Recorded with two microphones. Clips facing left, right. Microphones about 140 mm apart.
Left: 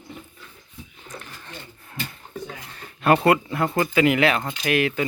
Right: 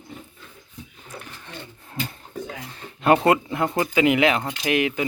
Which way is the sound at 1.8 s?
25° right (ahead or behind).